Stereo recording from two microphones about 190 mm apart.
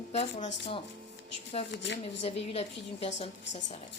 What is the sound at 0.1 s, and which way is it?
Speech, 35° left (ahead or behind).